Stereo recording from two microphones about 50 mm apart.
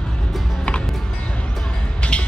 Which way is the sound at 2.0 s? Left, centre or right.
Left.